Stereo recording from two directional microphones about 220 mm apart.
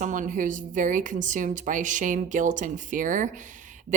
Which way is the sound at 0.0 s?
35° right (ahead or behind).